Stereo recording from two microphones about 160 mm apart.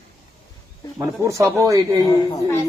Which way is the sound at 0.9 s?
20° right (ahead or behind).